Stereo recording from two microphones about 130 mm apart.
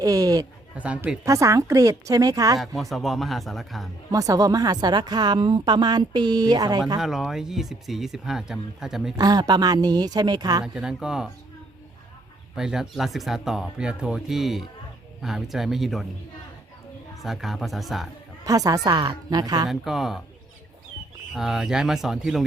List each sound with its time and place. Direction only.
0.0 s a sound: 25° right (ahead or behind)
0.8 s speech: 10° right (ahead or behind)
1.2 s a woman's voice: 25° right (ahead or behind)
2.6 s speech: centre (ahead or behind)
4.1 s a woman's voice: 25° right (ahead or behind)
7.0 s speech: centre (ahead or behind)
9.1 s a woman's voice: 30° right (ahead or behind)
10.6 s speech: 5° right (ahead or behind)
12.5 s speech: 5° right (ahead or behind)
17.2 s speech: centre (ahead or behind)
18.4 s a woman's voice: 30° right (ahead or behind)
19.6 s speech: centre (ahead or behind)
21.3 s speech: 5° right (ahead or behind)